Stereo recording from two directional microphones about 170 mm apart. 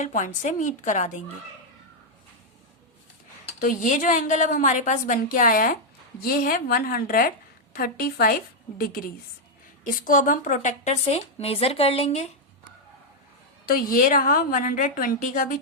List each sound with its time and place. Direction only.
0.0 s a woman's voice: 45° left (ahead or behind)
3.6 s a woman's voice: 50° left (ahead or behind)
13.7 s a woman's voice: 55° left (ahead or behind)